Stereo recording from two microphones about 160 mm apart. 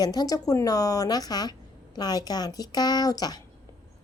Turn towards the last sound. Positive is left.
turn(degrees=25)  # may be behind; listen again after turning